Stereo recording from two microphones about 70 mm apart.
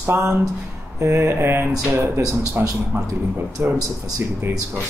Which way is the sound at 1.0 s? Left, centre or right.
Right.